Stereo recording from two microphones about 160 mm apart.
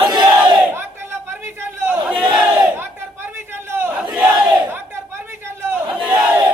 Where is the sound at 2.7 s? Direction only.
15° right (ahead or behind).